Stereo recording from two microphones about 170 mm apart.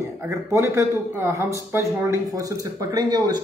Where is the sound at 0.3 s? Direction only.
20° right (ahead or behind).